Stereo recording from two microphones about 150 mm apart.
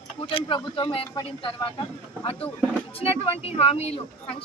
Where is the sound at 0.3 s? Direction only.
35° left (ahead or behind).